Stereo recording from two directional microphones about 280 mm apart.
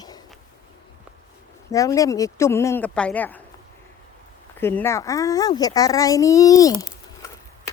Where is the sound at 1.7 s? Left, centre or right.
Centre.